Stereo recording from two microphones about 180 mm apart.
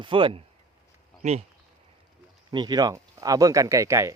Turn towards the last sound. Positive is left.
turn(degrees=-15)  # may be behind; listen again after turning